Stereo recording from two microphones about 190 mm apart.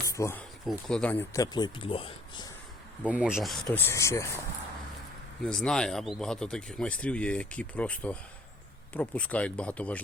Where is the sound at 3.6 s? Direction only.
15° left (ahead or behind).